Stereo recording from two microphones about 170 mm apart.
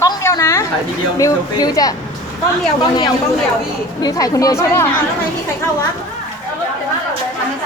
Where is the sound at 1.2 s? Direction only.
20° left (ahead or behind).